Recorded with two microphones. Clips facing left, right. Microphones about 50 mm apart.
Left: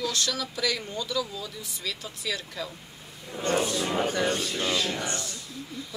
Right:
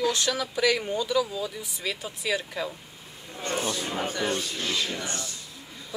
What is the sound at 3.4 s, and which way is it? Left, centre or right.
Roar, left.